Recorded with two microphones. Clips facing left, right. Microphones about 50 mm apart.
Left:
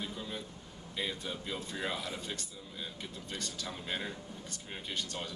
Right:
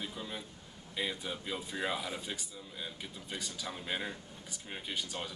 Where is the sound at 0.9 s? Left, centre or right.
Centre.